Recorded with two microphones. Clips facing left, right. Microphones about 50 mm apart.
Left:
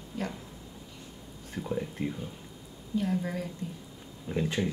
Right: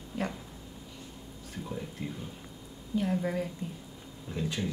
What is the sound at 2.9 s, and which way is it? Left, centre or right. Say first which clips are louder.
Speech: right 1 dB; centre.